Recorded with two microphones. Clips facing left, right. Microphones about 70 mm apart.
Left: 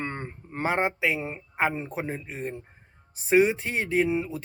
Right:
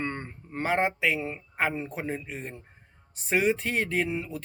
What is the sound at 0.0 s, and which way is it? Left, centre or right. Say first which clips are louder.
Speech: even; left.